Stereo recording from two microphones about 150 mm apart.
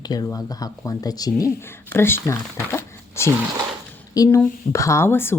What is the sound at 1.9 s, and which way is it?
Speech, 15° left (ahead or behind).